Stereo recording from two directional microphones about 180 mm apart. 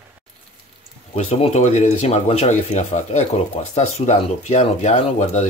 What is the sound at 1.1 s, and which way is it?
Speech, 35° left (ahead or behind).